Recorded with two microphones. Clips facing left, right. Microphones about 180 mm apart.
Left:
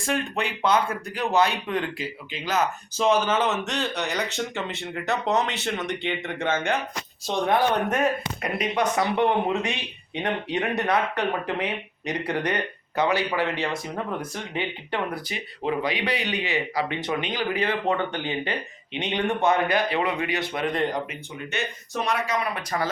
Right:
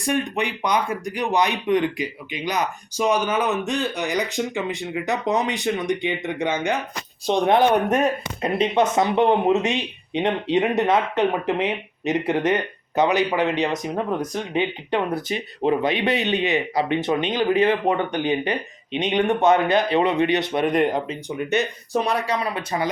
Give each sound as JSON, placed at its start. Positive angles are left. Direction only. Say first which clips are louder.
{"t": 0.0, "sound": "speech", "louder": "right 4 dB", "side_deg": -15}
{"t": 7.3, "sound": "speech", "louder": "right 5 dB", "side_deg": -20}
{"t": 21.9, "sound": "speech", "louder": "right 4 dB", "side_deg": -35}